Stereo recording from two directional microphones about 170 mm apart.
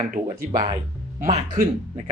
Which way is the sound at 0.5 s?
25° right (ahead or behind).